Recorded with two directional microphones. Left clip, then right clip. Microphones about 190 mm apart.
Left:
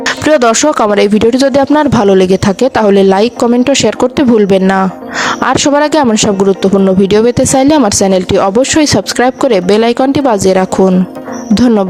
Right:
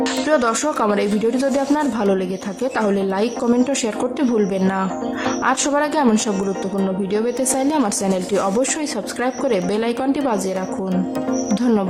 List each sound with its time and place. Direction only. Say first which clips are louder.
0.3 s speech: left 12 dB; 45° left (ahead or behind)